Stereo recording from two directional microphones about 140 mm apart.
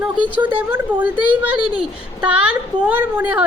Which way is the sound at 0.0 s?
10° right (ahead or behind).